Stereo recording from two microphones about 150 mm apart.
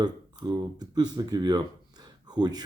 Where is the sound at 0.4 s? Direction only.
25° right (ahead or behind).